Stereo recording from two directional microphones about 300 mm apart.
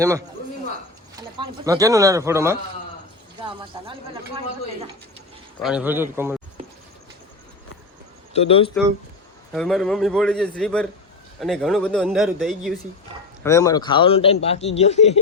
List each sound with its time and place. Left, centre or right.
1.1 s speech: centre
3.4 s a sound: centre
5.5 s speech: centre
8.3 s speech: centre
9.5 s a man's voice: centre; by 15.2 s left